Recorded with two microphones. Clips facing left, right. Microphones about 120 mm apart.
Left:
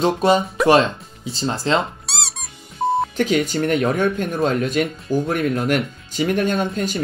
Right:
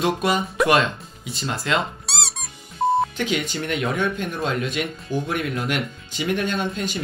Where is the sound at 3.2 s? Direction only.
45° left (ahead or behind).